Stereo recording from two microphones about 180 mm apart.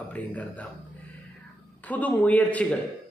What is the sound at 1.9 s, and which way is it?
Speech, 10° left (ahead or behind).